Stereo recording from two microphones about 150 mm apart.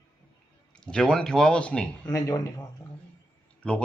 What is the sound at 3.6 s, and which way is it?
Speech, 10° left (ahead or behind).